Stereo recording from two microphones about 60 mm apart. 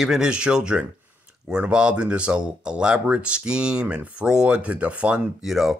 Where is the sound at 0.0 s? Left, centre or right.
Centre.